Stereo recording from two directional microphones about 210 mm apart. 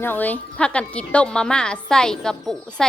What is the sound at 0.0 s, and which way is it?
A woman's voice, 10° left (ahead or behind).